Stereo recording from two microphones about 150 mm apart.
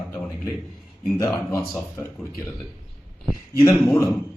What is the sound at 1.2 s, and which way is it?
A man's voice, 20° left (ahead or behind).